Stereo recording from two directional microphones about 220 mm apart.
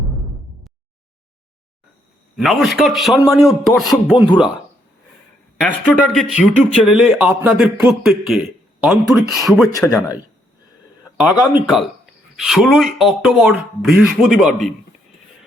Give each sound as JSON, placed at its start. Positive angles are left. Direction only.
{"t": 2.3, "sound": "speech", "side_deg": 0}
{"t": 4.3, "sound": "speech", "side_deg": 20}
{"t": 5.5, "sound": "speech", "side_deg": 5}
{"t": 11.2, "sound": "speech", "side_deg": 0}